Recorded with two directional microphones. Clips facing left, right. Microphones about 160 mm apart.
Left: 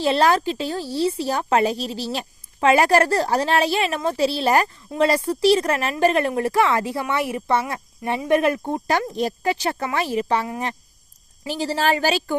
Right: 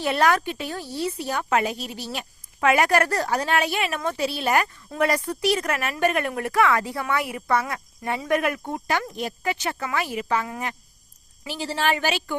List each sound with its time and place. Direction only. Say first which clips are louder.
0.0 s a woman's voice: left 3 dB; 30° left (ahead or behind)